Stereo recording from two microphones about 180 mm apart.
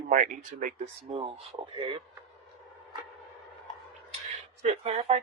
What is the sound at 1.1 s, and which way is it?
Speech, 35° right (ahead or behind).